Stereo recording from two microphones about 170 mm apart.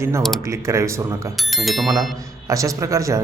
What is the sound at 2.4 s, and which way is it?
Speech, 20° right (ahead or behind).